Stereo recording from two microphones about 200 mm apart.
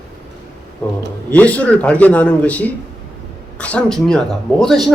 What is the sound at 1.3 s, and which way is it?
A man's voice, 5° left (ahead or behind).